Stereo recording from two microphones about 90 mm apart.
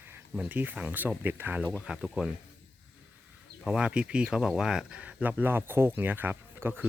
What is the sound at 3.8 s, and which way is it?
Speech, 10° right (ahead or behind).